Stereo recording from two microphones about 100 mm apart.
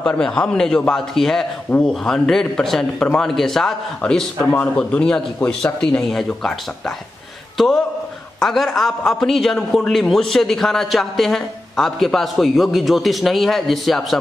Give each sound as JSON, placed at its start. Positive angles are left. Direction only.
{"t": 0.0, "sound": "a man's voice", "side_deg": 10}
{"t": 7.5, "sound": "a man's voice", "side_deg": 5}